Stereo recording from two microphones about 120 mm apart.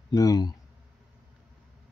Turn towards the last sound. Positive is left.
turn(degrees=35)  # may be behind; listen again after turning